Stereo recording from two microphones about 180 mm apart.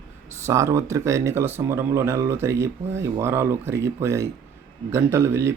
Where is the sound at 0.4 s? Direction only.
15° right (ahead or behind).